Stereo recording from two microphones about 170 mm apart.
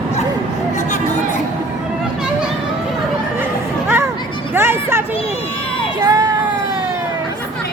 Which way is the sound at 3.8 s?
15° right (ahead or behind).